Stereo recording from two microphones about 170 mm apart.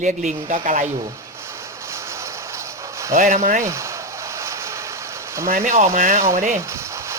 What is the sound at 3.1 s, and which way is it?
Speech, 50° right (ahead or behind).